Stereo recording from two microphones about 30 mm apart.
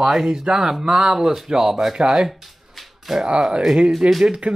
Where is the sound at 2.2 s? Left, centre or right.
Centre.